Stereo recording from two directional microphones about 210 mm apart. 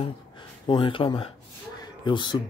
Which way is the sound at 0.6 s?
25° left (ahead or behind).